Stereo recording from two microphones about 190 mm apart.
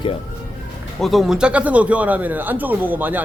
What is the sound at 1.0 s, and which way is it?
Speech, centre (ahead or behind).